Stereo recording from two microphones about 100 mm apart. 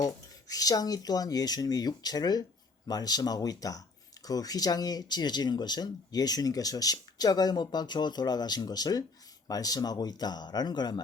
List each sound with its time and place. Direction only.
0.0 s speech: 40° left (ahead or behind)